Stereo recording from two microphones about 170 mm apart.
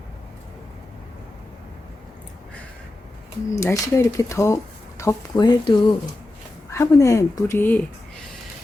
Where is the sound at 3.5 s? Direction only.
15° left (ahead or behind).